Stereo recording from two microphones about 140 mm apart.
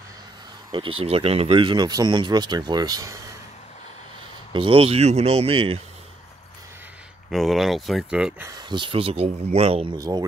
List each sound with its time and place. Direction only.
0.7 s speech: 35° right (ahead or behind)
4.5 s speech: 40° right (ahead or behind)
7.2 s speech: centre (ahead or behind)
8.5 s speech: 30° right (ahead or behind); by 9.8 s 45° right (ahead or behind)
9.9 s speech: 25° right (ahead or behind)